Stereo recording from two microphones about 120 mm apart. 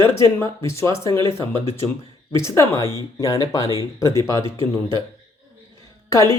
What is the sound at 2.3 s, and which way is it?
Speech, 25° left (ahead or behind).